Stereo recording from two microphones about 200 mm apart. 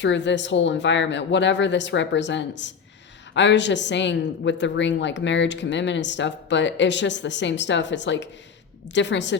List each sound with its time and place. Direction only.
0.0 s a woman's voice: 65° left (ahead or behind)